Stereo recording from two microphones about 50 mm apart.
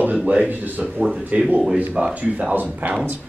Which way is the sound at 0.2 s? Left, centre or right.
Right.